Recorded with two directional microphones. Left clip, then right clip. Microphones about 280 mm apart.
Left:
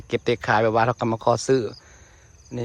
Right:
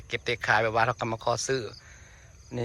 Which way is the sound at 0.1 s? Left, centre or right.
Centre.